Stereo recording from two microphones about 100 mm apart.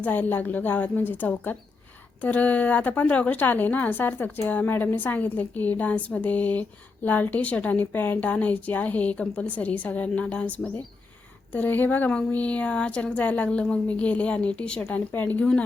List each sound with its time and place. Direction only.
0.0 s a woman's voice: 15° left (ahead or behind)